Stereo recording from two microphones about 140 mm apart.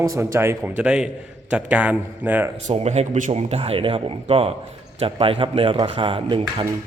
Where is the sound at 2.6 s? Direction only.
50° right (ahead or behind).